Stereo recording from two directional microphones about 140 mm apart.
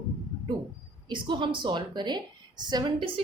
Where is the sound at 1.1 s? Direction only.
35° right (ahead or behind).